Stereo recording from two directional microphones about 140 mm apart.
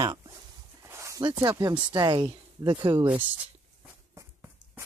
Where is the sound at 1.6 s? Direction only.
30° right (ahead or behind).